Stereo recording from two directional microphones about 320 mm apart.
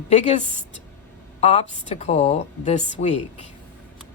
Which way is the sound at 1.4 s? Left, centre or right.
Centre.